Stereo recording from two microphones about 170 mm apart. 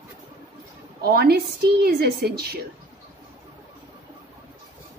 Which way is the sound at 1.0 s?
70° right (ahead or behind).